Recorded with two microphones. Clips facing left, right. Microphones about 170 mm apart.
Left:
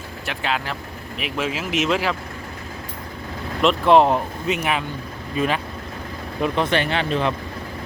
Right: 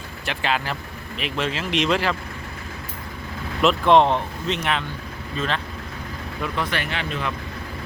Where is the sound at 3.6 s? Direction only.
Centre (ahead or behind).